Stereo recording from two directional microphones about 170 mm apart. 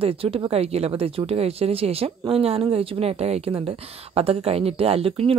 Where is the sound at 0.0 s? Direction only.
35° right (ahead or behind).